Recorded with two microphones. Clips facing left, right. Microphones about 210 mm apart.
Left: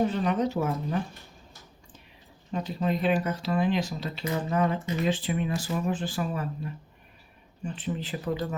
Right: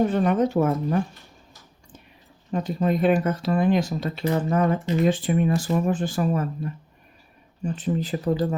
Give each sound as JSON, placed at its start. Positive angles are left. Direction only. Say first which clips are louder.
{"t": 0.1, "sound": "speech", "louder": "right 6 dB", "side_deg": -50}
{"t": 2.5, "sound": "speech", "louder": "right 5 dB", "side_deg": -50}
{"t": 7.6, "sound": "speech", "louder": "right 7 dB", "side_deg": -40}